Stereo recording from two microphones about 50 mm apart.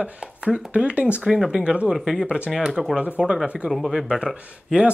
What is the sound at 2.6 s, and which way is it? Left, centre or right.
Speech, centre.